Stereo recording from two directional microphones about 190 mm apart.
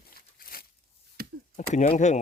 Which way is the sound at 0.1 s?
50° left (ahead or behind).